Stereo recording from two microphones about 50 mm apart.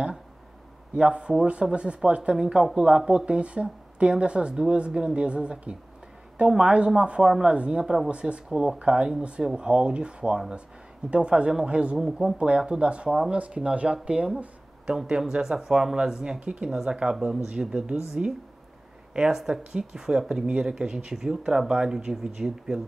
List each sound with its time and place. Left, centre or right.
0.9 s speech: centre
12.0 s speech: centre
19.1 s speech: centre